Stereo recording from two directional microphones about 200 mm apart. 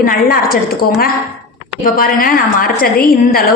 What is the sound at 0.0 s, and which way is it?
A man's voice, 45° left (ahead or behind).